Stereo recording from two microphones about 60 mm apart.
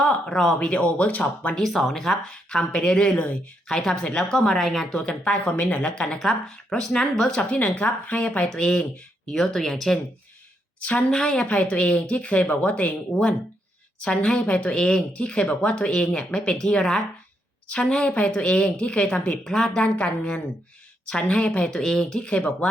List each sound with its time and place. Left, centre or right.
0.0 s speech: centre
0.7 s speech: left
1.6 s speech: centre
5.0 s speech: centre
7.5 s speech: left; by 10.0 s centre
10.8 s speech: left
11.2 s speech: centre
11.4 s speech: left
14.7 s speech: centre
19.8 s speech: centre
21.8 s speech: centre